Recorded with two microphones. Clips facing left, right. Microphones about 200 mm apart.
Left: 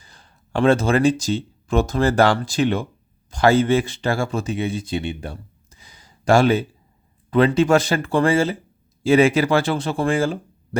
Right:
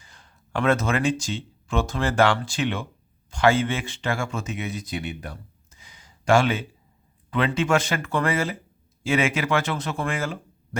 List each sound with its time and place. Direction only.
0.0 s speech: 35° left (ahead or behind)